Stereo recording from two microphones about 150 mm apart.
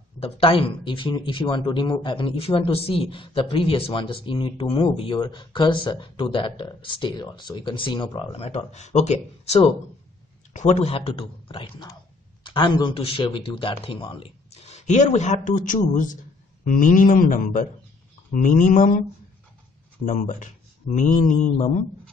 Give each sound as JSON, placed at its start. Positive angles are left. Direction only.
{"t": 0.2, "sound": "speech", "side_deg": 40}
{"t": 20.1, "sound": "speech", "side_deg": 60}